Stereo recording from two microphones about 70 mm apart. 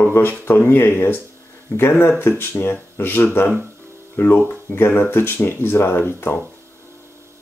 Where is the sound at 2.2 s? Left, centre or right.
Left.